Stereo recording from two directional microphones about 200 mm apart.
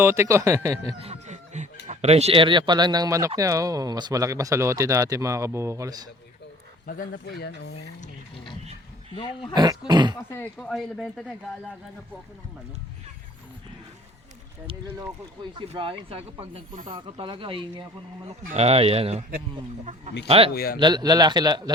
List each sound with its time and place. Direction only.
0.0 s speech: 15° right (ahead or behind)
1.0 s speech: 35° right (ahead or behind); by 6.1 s 15° right (ahead or behind)
6.8 s speech: 50° left (ahead or behind)
9.1 s speech: 25° left (ahead or behind)
9.6 s speech: 20° right (ahead or behind)
10.3 s speech: 5° left (ahead or behind)
15.5 s a man's voice: 30° right (ahead or behind)
20.5 s speech: 50° left (ahead or behind)
20.7 s speech: 20° right (ahead or behind)